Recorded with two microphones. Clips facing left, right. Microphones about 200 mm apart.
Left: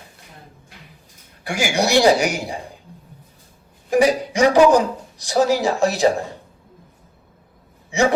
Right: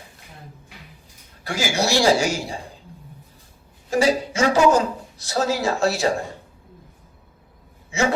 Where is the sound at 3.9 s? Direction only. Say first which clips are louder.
Left 3 dB; 15° left (ahead or behind).